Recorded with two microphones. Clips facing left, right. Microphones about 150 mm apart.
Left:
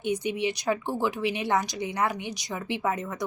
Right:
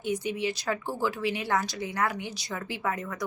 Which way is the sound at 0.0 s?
20° left (ahead or behind).